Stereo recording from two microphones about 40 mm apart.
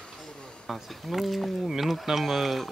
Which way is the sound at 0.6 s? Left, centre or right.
Centre.